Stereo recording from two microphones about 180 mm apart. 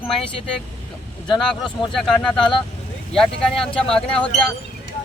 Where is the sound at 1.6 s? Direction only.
5° left (ahead or behind).